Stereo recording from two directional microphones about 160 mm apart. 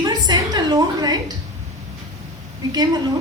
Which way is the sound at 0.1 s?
25° right (ahead or behind).